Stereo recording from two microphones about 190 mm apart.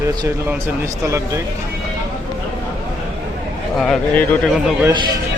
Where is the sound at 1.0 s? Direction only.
15° right (ahead or behind).